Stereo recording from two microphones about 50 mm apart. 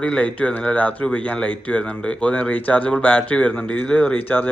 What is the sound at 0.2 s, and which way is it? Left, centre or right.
Speech, left.